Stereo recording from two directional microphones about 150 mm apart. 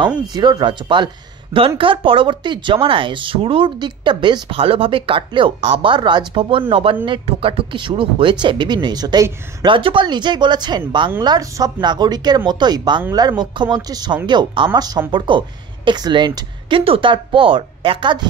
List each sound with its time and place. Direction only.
0.3 s speech: 30° right (ahead or behind)